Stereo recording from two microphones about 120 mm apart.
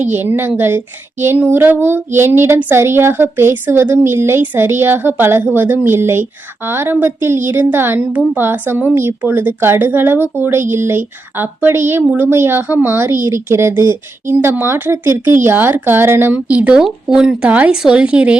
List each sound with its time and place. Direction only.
0.0 s a woman's voice: 15° right (ahead or behind)